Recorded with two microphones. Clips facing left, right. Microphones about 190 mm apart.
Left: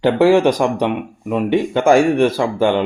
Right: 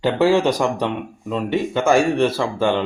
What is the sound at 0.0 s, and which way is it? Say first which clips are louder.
Speech: left 4 dB; 15° left (ahead or behind).